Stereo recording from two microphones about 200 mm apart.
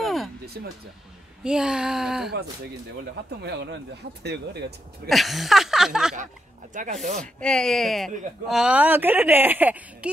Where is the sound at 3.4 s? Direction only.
60° right (ahead or behind).